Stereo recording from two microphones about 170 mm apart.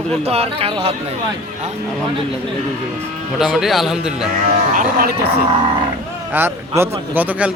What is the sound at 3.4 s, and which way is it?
Speech, centre (ahead or behind).